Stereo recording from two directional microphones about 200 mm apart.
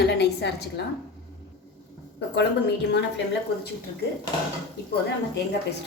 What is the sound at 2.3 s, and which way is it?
Speech, 60° left (ahead or behind).